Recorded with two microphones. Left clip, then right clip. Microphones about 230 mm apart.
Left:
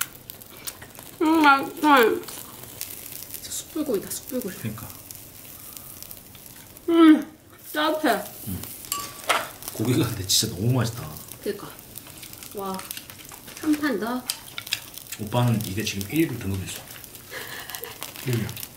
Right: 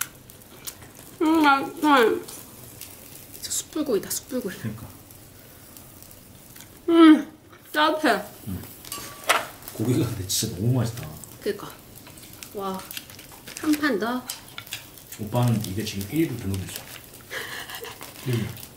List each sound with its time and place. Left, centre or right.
1.2 s speech: centre
3.4 s speech: centre
6.9 s speech: centre
13.5 s stir: centre
17.3 s a sound: centre